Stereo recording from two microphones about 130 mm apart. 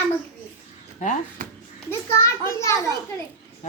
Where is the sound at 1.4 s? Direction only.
90° right.